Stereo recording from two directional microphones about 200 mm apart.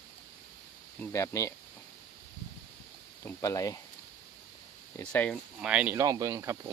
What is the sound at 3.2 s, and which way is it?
Speech, 15° left (ahead or behind).